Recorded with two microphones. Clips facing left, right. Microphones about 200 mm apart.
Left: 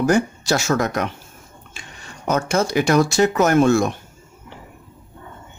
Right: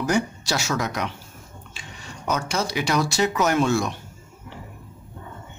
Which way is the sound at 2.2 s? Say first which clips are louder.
Left 6 dB; 50° left (ahead or behind).